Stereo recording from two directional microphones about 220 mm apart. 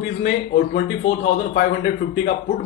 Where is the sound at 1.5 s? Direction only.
40° left (ahead or behind).